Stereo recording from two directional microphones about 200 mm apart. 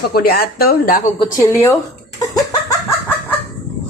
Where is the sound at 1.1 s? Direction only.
20° left (ahead or behind).